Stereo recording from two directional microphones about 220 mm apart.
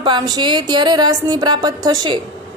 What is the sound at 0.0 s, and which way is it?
Speech, 20° right (ahead or behind).